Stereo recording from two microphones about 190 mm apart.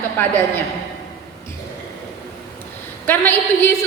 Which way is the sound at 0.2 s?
10° left (ahead or behind).